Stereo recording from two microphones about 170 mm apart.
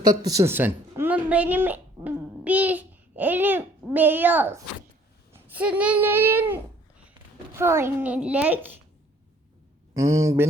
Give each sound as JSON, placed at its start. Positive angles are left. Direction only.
{"t": 0.1, "sound": "a woman's voice", "side_deg": -20}
{"t": 7.6, "sound": "a child's voice", "side_deg": -15}
{"t": 9.9, "sound": "a child's voice", "side_deg": -20}